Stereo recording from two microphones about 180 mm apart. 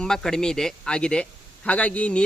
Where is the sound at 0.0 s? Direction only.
5° left (ahead or behind).